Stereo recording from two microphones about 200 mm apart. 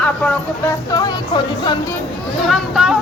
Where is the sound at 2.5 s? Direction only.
Centre (ahead or behind).